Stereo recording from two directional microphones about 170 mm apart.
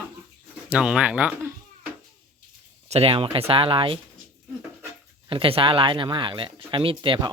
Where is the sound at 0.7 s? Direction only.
5° right (ahead or behind).